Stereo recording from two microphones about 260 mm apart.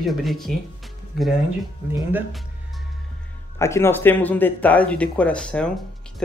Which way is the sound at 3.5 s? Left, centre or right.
Centre.